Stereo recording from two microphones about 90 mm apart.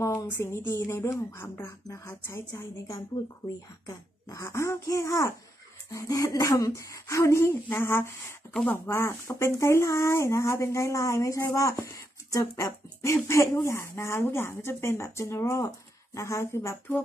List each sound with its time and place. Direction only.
0.4 s speech: 25° left (ahead or behind)